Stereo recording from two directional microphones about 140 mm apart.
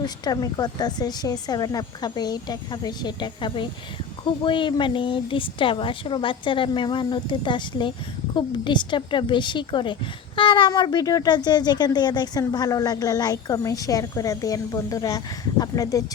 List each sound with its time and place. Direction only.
0.0 s speech: 25° left (ahead or behind)